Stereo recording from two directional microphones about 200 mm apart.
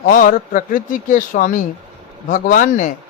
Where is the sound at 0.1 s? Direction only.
45° left (ahead or behind).